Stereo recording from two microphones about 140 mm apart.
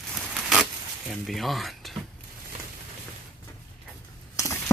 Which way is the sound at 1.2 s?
Centre (ahead or behind).